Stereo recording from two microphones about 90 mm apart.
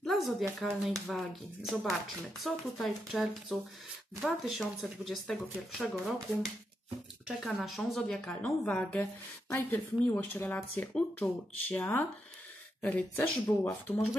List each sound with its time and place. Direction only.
0.0 s speech: centre (ahead or behind)
8.3 s a woman's voice: 15° left (ahead or behind)